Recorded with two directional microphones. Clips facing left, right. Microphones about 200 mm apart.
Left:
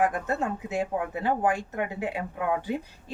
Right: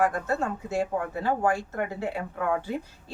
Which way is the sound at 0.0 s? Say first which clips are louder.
Even; 15° left (ahead or behind).